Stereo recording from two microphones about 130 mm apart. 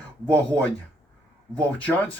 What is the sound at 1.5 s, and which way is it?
Speech, 10° left (ahead or behind).